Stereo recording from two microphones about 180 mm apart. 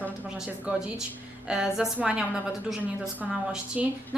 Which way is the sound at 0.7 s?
5° right (ahead or behind).